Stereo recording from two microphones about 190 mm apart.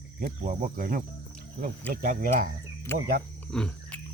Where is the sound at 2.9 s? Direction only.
15° left (ahead or behind).